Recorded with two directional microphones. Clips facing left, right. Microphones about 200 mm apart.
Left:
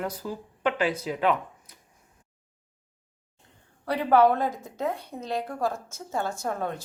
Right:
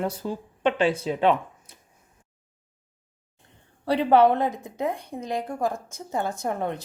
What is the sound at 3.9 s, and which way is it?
A woman's voice, 25° right (ahead or behind).